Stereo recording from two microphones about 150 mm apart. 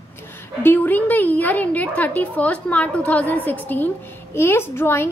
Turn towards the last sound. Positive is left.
turn(degrees=15)  # may be behind; listen again after turning